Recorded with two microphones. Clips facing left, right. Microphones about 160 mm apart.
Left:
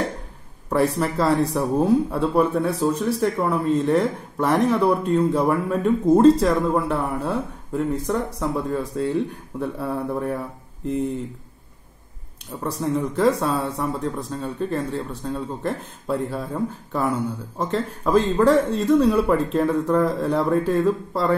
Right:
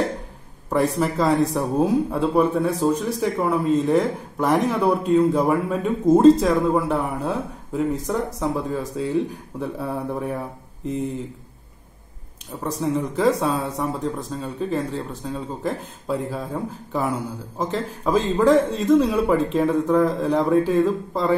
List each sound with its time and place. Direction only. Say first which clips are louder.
0.9 s speech: right 1 dB; centre (ahead or behind)
12.5 s speech: even; centre (ahead or behind)